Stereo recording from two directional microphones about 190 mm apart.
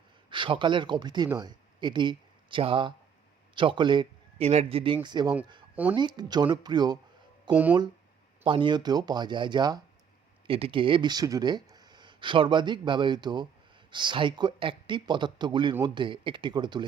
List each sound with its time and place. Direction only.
0.3 s a man's voice: 25° right (ahead or behind)
7.5 s speech: 10° right (ahead or behind)
8.4 s speech: 25° right (ahead or behind)